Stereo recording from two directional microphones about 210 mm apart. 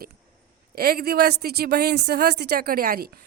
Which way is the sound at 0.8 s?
45° right (ahead or behind).